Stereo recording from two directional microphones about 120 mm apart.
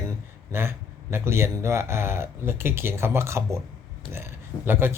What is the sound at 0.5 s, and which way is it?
Speech, 20° right (ahead or behind).